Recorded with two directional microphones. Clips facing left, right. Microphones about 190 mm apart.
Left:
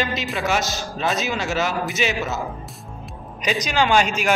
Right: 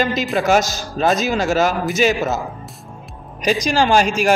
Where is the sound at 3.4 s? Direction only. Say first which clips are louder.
Right 4 dB; 40° right (ahead or behind).